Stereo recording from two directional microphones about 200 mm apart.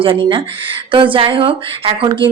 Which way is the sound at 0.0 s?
25° right (ahead or behind).